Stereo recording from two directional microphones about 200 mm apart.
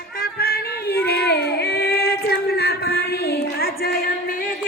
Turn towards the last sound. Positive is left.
turn(degrees=45)  # may be behind; listen again after turning